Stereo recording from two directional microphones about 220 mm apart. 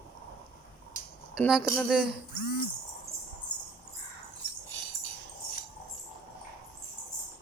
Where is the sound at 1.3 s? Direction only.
Centre (ahead or behind).